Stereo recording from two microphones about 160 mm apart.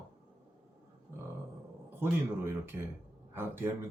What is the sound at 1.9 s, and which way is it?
Speech, 15° right (ahead or behind).